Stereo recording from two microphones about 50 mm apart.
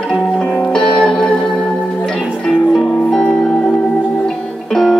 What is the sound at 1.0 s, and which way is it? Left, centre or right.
Music, centre.